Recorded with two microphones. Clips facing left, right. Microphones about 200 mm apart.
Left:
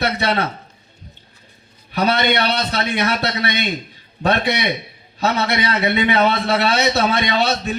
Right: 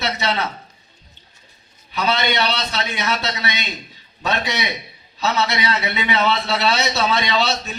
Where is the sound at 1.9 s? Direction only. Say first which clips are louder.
Left 3 dB; 55° left (ahead or behind).